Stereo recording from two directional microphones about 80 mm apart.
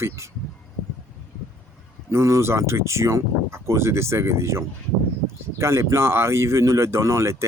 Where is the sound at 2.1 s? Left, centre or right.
Right.